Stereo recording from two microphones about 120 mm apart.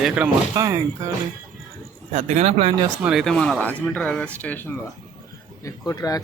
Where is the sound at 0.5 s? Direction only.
25° right (ahead or behind).